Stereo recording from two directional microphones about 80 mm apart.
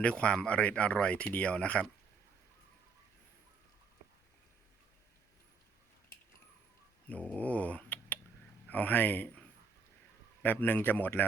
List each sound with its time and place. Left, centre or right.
0.0 s speech: centre
7.3 s a sound: centre
8.6 s a man's voice: centre